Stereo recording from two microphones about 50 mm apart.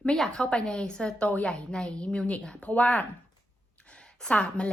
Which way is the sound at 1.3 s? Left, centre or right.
Left.